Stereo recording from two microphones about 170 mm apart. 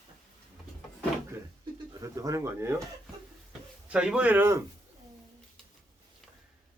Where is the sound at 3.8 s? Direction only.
5° right (ahead or behind).